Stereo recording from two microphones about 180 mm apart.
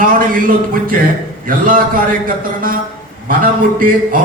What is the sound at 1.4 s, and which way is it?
Speech, 50° right (ahead or behind).